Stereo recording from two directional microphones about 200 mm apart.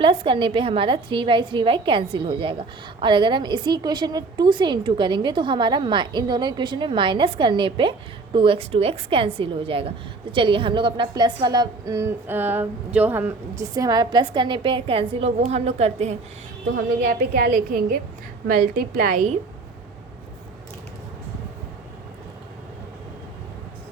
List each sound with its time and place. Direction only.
0.0 s a woman's voice: 25° right (ahead or behind)
16.7 s a woman's voice: 50° right (ahead or behind)